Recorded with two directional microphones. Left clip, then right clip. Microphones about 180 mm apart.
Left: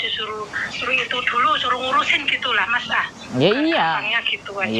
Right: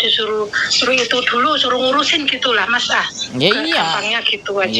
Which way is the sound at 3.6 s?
10° left (ahead or behind).